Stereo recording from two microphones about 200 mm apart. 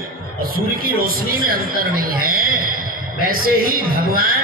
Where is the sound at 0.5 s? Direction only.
45° right (ahead or behind).